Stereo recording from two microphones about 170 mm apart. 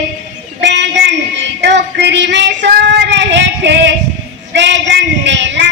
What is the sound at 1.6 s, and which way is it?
Child singing, 90° right.